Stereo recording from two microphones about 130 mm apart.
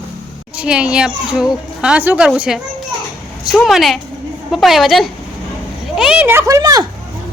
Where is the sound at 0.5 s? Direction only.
10° right (ahead or behind).